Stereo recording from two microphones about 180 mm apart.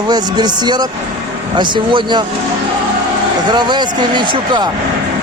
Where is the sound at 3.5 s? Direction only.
25° right (ahead or behind).